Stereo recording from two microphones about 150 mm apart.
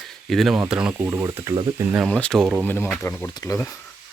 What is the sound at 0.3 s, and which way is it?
Speech, centre (ahead or behind).